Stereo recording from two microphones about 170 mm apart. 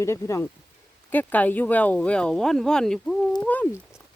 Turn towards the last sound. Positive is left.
turn(degrees=10)  # may be behind; listen again after turning